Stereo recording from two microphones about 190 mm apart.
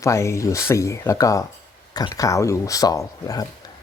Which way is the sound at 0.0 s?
15° left (ahead or behind).